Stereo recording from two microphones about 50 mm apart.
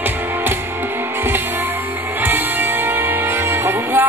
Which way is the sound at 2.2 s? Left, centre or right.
Right.